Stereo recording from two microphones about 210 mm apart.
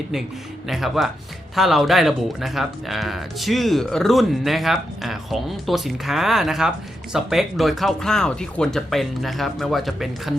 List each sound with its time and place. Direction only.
0.7 s speech: centre (ahead or behind)